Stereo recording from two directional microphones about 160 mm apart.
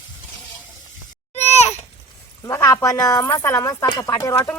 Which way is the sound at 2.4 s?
20° left (ahead or behind).